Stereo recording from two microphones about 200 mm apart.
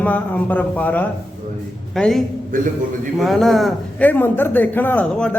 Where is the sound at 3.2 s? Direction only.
Centre (ahead or behind).